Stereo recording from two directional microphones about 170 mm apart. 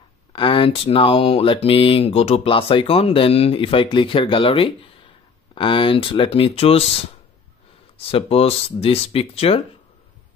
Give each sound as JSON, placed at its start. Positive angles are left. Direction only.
{"t": 0.3, "sound": "speech", "side_deg": 30}
{"t": 8.1, "sound": "speech", "side_deg": 35}